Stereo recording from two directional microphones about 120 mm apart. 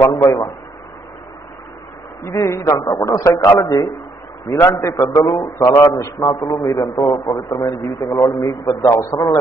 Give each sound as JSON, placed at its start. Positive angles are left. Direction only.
{"t": 0.2, "sound": "a man's voice", "side_deg": 30}
{"t": 2.2, "sound": "a man's voice", "side_deg": 25}